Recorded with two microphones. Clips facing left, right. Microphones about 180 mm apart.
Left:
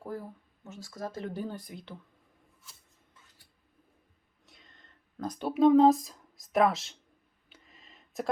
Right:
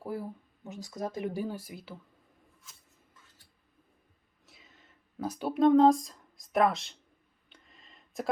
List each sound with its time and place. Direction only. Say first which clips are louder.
0.0 s speech: right 2 dB; 10° right (ahead or behind)
4.4 s speech: even; 5° right (ahead or behind)
7.5 s a sound: left 1 dB; centre (ahead or behind)